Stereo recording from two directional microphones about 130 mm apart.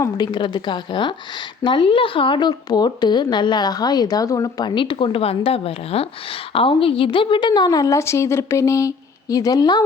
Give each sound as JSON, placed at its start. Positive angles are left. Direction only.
{"t": 0.0, "sound": "a woman's voice", "side_deg": 35}